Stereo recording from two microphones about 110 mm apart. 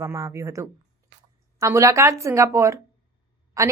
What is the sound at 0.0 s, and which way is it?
A woman's voice, 25° right (ahead or behind).